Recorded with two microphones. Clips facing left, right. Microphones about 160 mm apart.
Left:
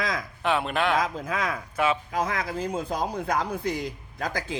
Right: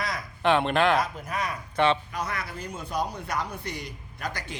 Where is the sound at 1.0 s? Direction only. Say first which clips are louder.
Left 3 dB; 90° left.